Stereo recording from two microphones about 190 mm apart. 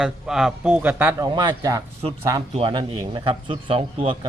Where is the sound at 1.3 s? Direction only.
25° right (ahead or behind).